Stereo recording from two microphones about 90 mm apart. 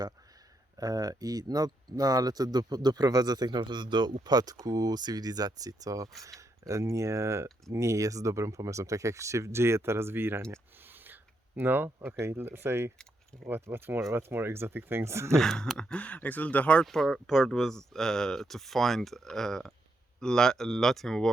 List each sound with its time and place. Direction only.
0.8 s speech: 40° right (ahead or behind); by 10.4 s 25° right (ahead or behind)
10.5 s a sound: 20° right (ahead or behind)
12.0 s speech: 25° right (ahead or behind)
15.4 s speech: 5° left (ahead or behind)
15.8 s speech: 10° left (ahead or behind)
16.8 s speech: 5° left (ahead or behind)